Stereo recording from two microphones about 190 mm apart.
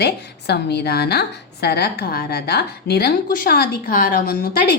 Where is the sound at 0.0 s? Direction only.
60° left (ahead or behind).